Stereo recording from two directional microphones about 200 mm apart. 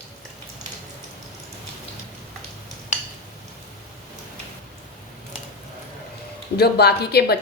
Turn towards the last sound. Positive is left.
turn(degrees=55)  # may be behind; listen again after turning